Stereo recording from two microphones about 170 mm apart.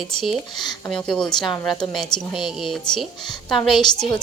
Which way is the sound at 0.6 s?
25° left (ahead or behind).